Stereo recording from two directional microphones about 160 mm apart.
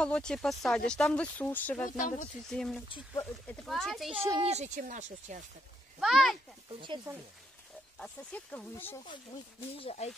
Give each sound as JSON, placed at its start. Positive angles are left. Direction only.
{"t": 0.0, "sound": "speech", "side_deg": 5}
{"t": 1.9, "sound": "speech", "side_deg": 55}
{"t": 2.5, "sound": "speech", "side_deg": 0}
{"t": 4.4, "sound": "speech", "side_deg": -40}
{"t": 4.7, "sound": "speech", "side_deg": -55}
{"t": 5.9, "sound": "speech", "side_deg": 0}
{"t": 6.7, "sound": "speech", "side_deg": -30}
{"t": 8.0, "sound": "speech", "side_deg": 5}
{"t": 9.8, "sound": "speech", "side_deg": 40}